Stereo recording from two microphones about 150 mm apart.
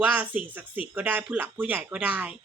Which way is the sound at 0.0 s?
10° right (ahead or behind).